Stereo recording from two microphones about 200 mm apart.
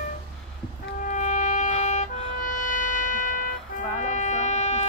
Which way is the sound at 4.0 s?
40° left (ahead or behind).